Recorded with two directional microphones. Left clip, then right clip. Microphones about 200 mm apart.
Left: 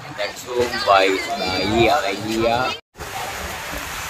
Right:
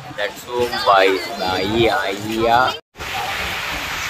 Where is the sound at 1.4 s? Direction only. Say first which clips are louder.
Right 1 dB; 5° right (ahead or behind).